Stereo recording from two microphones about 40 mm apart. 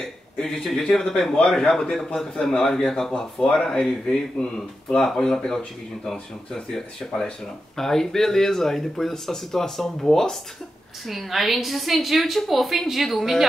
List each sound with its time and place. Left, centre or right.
0.0 s speech: centre
4.9 s speech: centre
11.1 s a woman's voice: centre